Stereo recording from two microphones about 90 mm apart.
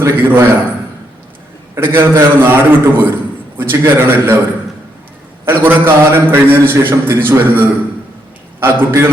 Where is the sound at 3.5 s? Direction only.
25° right (ahead or behind).